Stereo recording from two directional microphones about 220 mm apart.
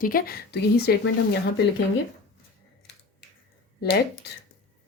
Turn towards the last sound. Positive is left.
turn(degrees=45)  # may be behind; listen again after turning